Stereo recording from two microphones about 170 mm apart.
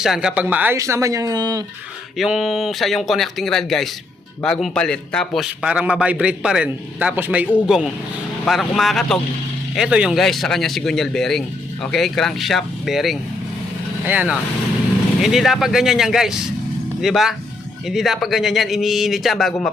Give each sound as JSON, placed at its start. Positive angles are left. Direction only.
{"t": 0.0, "sound": "speech", "side_deg": -5}
{"t": 2.1, "sound": "a man's voice", "side_deg": 0}